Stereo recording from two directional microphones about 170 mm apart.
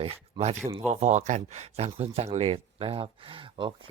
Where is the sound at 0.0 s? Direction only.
40° right (ahead or behind).